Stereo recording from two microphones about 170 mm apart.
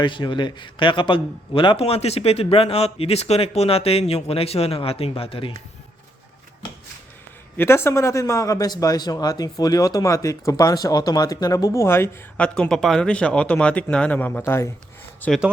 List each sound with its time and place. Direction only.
0.0 s a man's voice: 30° left (ahead or behind)
7.5 s a man's voice: 15° left (ahead or behind)